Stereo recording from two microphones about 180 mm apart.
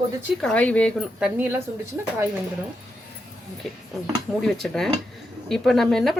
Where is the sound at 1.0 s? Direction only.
5° right (ahead or behind).